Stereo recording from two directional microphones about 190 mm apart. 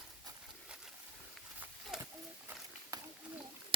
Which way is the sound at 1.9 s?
Centre (ahead or behind).